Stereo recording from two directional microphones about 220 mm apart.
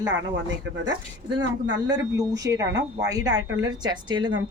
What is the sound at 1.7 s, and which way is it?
A woman's voice, 15° right (ahead or behind).